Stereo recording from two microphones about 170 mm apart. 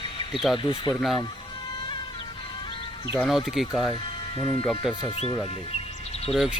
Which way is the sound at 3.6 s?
5° right (ahead or behind).